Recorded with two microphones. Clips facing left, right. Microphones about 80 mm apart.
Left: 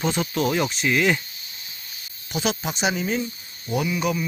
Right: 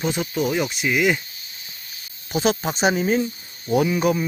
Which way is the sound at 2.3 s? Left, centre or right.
Right.